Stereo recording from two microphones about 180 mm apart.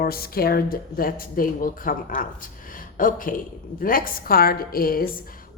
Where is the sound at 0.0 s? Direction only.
55° left (ahead or behind).